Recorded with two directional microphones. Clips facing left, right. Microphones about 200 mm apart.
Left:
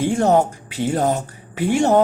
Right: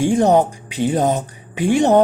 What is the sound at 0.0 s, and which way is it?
Speech, 15° right (ahead or behind).